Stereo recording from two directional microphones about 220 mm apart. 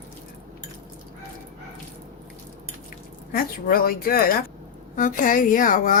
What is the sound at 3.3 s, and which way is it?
Speech, 40° left (ahead or behind).